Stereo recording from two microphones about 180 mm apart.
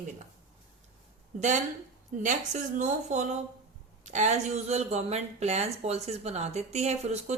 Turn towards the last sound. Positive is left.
turn(degrees=-40)  # may be behind; listen again after turning